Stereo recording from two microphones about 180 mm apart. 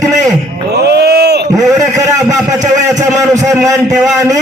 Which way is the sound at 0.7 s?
65° right (ahead or behind).